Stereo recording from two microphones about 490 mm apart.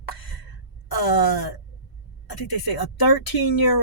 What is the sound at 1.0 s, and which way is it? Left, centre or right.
Speech, left.